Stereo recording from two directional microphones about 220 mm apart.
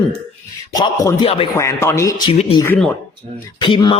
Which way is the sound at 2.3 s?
25° left (ahead or behind).